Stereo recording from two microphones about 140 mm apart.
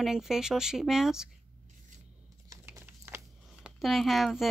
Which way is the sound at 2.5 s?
20° right (ahead or behind).